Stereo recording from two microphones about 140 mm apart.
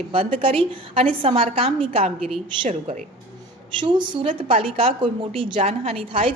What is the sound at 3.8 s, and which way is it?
A woman's voice, 35° right (ahead or behind).